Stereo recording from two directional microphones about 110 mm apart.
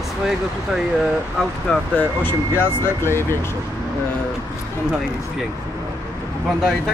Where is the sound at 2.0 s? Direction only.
20° left (ahead or behind).